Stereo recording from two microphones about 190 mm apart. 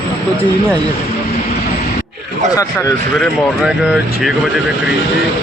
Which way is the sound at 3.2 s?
Centre (ahead or behind).